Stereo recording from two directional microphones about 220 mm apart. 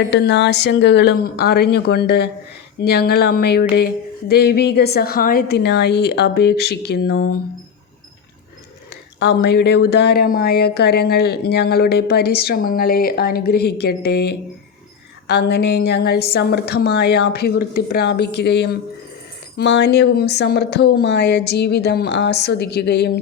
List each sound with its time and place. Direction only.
0.1 s speech: 50° left (ahead or behind)
9.1 s speech: 50° left (ahead or behind)
15.3 s speech: 50° left (ahead or behind)